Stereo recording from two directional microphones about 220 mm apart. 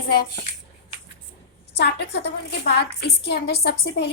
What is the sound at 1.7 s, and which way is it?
A woman's voice, 50° left (ahead or behind).